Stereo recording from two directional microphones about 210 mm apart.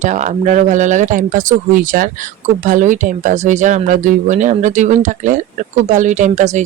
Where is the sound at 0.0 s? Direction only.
35° right (ahead or behind).